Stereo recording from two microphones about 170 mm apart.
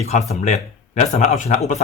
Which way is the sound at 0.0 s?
40° left (ahead or behind).